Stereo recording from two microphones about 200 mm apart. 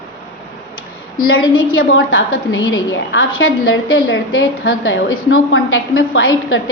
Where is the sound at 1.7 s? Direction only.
90° left.